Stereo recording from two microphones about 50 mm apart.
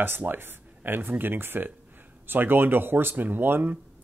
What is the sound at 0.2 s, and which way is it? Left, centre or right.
Speech, right.